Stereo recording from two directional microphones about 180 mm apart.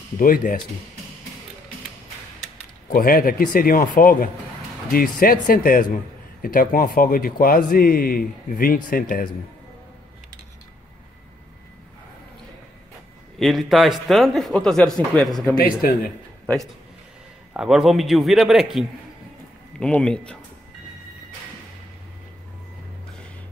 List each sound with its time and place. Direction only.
0.2 s a man's voice: 50° left (ahead or behind)
2.9 s a man's voice: 50° left (ahead or behind)
13.4 s a man's voice: centre (ahead or behind)
15.5 s a man's voice: 55° left (ahead or behind)
17.6 s a man's voice: centre (ahead or behind)